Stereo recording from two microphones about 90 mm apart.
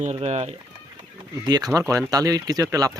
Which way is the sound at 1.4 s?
50° right (ahead or behind).